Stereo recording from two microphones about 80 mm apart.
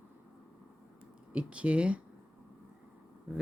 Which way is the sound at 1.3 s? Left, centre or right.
Centre.